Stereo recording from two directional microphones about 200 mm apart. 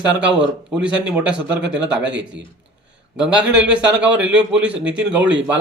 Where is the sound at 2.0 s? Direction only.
60° right (ahead or behind).